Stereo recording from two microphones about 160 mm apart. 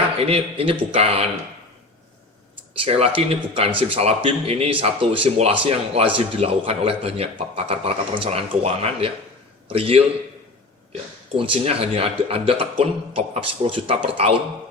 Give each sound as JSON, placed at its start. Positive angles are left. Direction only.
{"t": 0.2, "sound": "a man's voice", "side_deg": -35}
{"t": 2.8, "sound": "a man's voice", "side_deg": -40}
{"t": 11.3, "sound": "a man's voice", "side_deg": -35}